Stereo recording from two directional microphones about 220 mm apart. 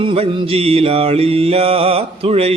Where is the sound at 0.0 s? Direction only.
25° right (ahead or behind).